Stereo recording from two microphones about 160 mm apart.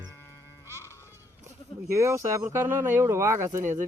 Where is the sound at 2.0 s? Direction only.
15° right (ahead or behind).